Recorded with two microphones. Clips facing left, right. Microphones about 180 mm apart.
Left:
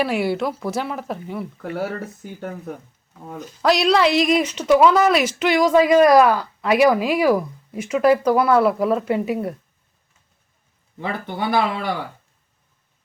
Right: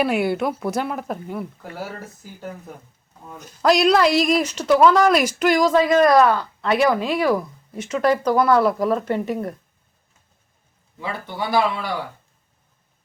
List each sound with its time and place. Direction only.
0.0 s speech: centre (ahead or behind)
1.7 s speech: 60° left (ahead or behind)
3.6 s speech: centre (ahead or behind)
11.0 s speech: 50° left (ahead or behind)